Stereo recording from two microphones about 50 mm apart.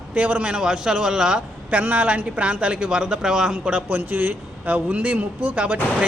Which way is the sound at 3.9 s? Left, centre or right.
Right.